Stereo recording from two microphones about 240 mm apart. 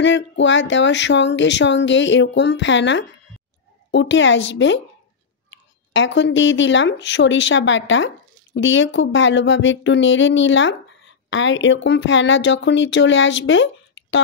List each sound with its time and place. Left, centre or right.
0.0 s speech: left